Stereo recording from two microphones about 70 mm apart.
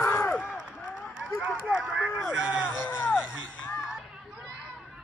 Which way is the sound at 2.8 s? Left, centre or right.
Left.